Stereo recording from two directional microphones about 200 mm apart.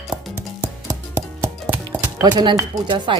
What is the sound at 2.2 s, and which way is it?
Speech, 20° right (ahead or behind).